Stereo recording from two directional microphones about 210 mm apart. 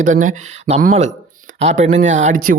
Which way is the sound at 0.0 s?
35° right (ahead or behind).